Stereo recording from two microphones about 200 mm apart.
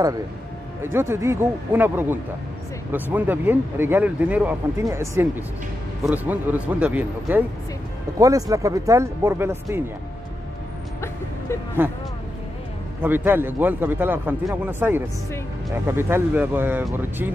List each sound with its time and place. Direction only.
0.8 s speech: 10° right (ahead or behind)
11.8 s speech: 10° right (ahead or behind)
13.0 s speech: 10° right (ahead or behind)